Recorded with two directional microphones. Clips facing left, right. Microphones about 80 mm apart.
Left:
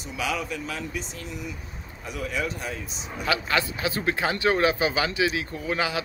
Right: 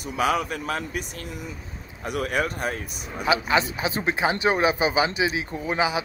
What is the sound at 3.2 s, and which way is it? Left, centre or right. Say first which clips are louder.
Speech: right 4 dB; centre.